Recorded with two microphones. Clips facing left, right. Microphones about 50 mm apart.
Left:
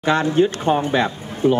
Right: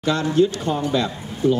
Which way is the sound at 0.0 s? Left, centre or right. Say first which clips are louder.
Left 2 dB; left.